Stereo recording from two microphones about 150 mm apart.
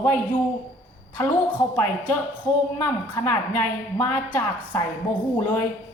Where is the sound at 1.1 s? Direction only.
10° left (ahead or behind).